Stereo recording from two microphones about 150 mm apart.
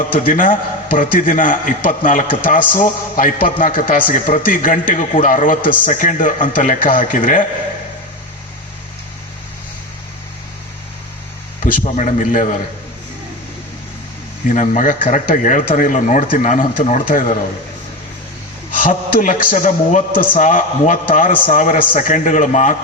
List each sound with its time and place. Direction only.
0.1 s a man's voice: 65° left (ahead or behind)
11.9 s a man's voice: 55° left (ahead or behind)
14.4 s a man's voice: 55° left (ahead or behind)
18.8 s a man's voice: 65° left (ahead or behind)